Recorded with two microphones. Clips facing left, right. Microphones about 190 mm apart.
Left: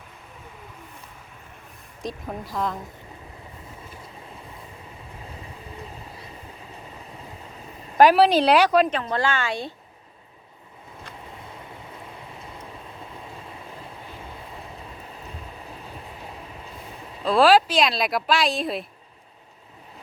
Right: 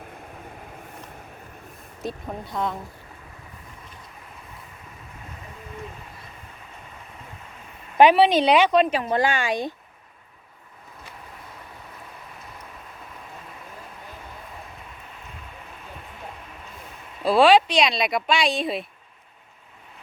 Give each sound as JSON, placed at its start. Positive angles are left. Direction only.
{"t": 2.0, "sound": "speech", "side_deg": 0}
{"t": 7.9, "sound": "speech", "side_deg": 0}
{"t": 9.0, "sound": "speech", "side_deg": -15}
{"t": 17.2, "sound": "speech", "side_deg": 0}